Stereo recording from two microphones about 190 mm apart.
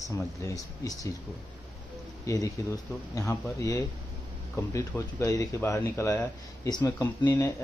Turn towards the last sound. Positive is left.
turn(degrees=15)  # may be behind; listen again after turning